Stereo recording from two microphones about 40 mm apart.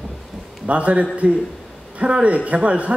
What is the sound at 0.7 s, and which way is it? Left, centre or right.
A man's voice, right.